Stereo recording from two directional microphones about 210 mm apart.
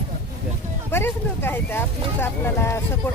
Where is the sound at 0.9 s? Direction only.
10° left (ahead or behind).